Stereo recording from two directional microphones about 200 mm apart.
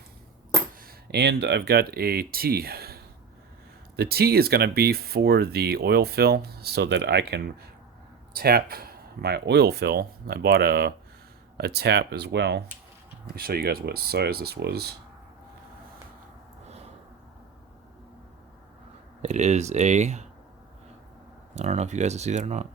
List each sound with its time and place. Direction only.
0.8 s speech: 50° right (ahead or behind)
19.2 s speech: 35° right (ahead or behind)
21.5 s speech: 35° right (ahead or behind)